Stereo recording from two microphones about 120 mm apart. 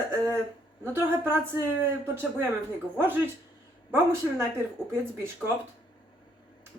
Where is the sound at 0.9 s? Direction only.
20° right (ahead or behind).